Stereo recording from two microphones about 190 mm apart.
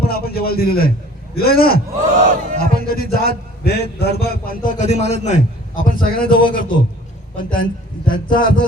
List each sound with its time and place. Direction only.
0.0 s a man's voice: 55° left (ahead or behind)
2.2 s music: 45° right (ahead or behind)
2.7 s a man's voice: 50° left (ahead or behind)